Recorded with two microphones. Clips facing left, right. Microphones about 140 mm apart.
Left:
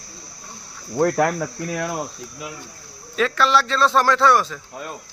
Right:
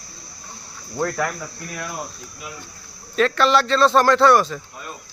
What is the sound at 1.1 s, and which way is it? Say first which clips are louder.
Cricket: left 5 dB; 40° left (ahead or behind).